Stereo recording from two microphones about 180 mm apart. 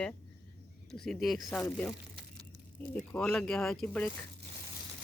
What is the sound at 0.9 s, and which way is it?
Speech, centre (ahead or behind).